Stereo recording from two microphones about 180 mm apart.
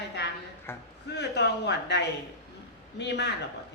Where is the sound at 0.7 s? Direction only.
15° left (ahead or behind).